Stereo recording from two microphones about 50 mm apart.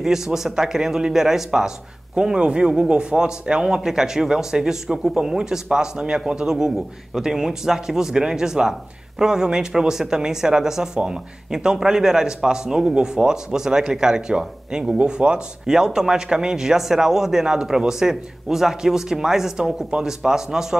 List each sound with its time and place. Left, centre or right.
0.0 s speech: centre